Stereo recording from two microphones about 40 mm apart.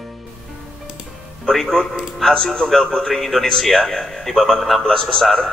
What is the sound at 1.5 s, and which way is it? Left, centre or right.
A man's voice, centre.